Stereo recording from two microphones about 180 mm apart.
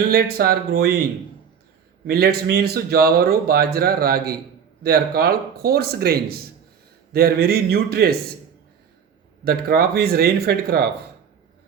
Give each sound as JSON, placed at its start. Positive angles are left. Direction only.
{"t": 0.1, "sound": "speech", "side_deg": -60}
{"t": 2.0, "sound": "speech", "side_deg": -60}
{"t": 9.4, "sound": "speech", "side_deg": -60}